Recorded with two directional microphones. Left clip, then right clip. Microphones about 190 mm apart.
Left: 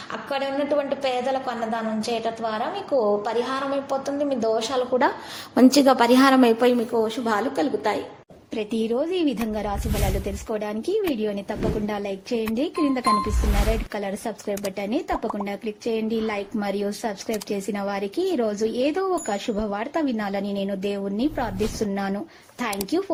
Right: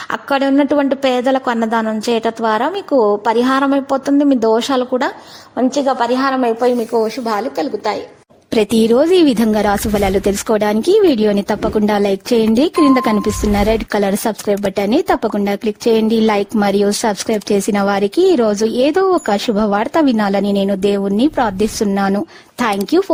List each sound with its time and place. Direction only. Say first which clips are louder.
0.1 s a woman's voice: right 11 dB; 50° right (ahead or behind)
5.5 s a woman's voice: right 2 dB; 20° left (ahead or behind)
6.9 s speech: right 7 dB; 40° right (ahead or behind)
7.3 s a woman's voice: right 5 dB; 25° right (ahead or behind)
8.4 s speech: right 13 dB; 70° right (ahead or behind); by 23.1 s 55° right (ahead or behind)